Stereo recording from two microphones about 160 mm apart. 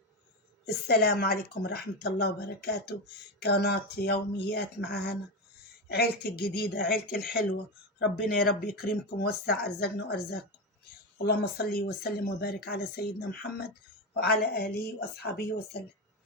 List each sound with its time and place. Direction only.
0.9 s speech: 80° left
5.9 s speech: 75° left (ahead or behind)
7.9 s speech: 75° left (ahead or behind)
11.3 s speech: 75° left (ahead or behind)
15.2 s speech: 90° left